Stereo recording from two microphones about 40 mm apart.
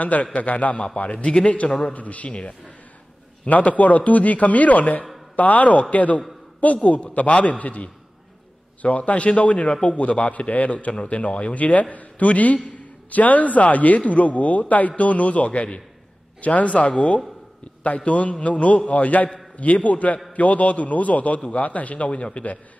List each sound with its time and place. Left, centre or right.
0.0 s a man's voice: left